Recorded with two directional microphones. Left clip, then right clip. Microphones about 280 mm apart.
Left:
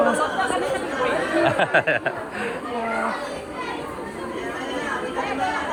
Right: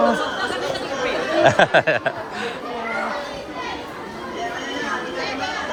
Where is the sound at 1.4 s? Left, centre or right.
Right.